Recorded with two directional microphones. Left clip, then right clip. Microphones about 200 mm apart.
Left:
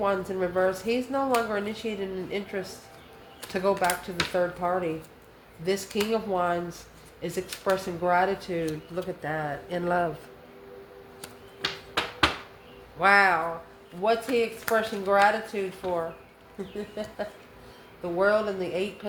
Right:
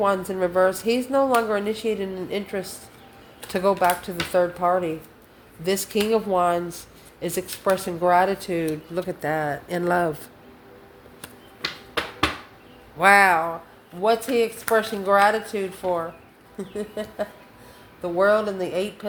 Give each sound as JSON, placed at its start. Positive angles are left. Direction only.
{"t": 0.0, "sound": "speech", "side_deg": -45}
{"t": 13.0, "sound": "speech", "side_deg": -55}
{"t": 18.0, "sound": "speech", "side_deg": -45}